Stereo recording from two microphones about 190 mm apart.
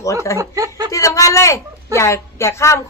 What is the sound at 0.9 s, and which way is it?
A woman's voice, 15° left (ahead or behind).